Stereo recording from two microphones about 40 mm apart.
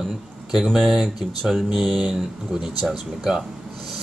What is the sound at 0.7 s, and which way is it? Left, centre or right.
Speech, centre.